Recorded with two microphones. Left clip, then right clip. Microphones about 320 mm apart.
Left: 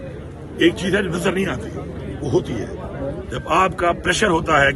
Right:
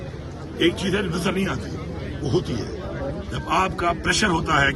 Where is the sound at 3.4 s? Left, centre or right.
Centre.